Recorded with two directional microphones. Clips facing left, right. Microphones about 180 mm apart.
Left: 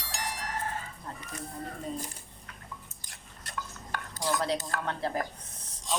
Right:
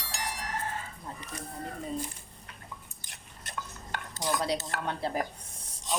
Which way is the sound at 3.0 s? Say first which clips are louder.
Even; 25° right (ahead or behind).